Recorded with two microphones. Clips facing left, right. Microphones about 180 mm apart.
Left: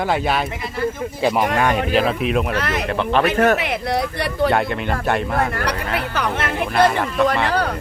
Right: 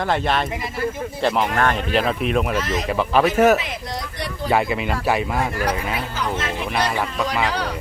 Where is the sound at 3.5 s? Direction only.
65° left (ahead or behind).